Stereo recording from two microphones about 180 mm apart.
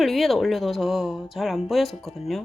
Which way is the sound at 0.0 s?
Centre (ahead or behind).